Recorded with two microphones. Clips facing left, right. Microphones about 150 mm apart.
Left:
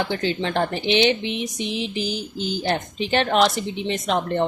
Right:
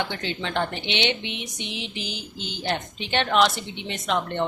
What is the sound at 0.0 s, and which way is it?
Speech, 35° left (ahead or behind).